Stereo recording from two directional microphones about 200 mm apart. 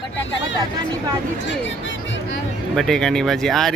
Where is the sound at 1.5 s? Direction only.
65° left (ahead or behind).